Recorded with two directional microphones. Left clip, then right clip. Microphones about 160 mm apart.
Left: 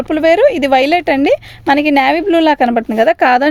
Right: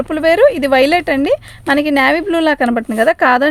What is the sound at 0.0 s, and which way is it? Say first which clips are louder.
Speech: left 1 dB; 30° left (ahead or behind).